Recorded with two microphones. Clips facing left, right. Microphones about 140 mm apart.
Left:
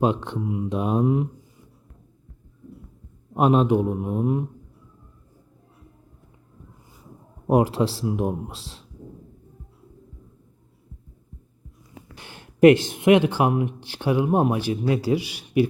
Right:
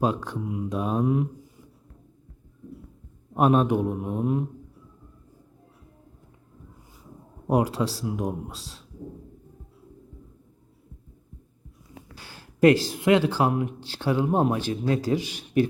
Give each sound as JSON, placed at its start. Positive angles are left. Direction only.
{"t": 0.0, "sound": "speech", "side_deg": 25}
{"t": 3.3, "sound": "speech", "side_deg": 15}
{"t": 7.4, "sound": "speech", "side_deg": 30}
{"t": 12.1, "sound": "speech", "side_deg": 20}